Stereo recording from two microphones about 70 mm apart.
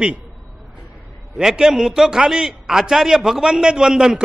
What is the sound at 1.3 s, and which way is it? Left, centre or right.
A man's voice, centre.